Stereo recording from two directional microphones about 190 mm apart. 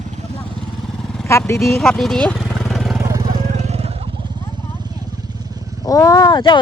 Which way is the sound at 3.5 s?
35° right (ahead or behind).